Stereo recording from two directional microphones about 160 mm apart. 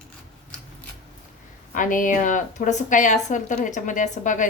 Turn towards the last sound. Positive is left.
turn(degrees=50)  # may be behind; listen again after turning